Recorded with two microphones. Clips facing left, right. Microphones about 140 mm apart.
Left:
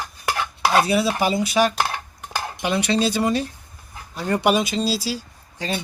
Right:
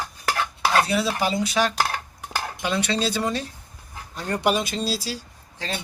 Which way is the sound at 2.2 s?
15° left (ahead or behind).